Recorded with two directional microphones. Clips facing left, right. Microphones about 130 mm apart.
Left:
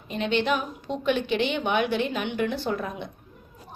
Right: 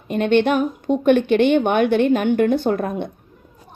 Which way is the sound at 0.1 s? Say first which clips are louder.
Right 8 dB; 55° right (ahead or behind).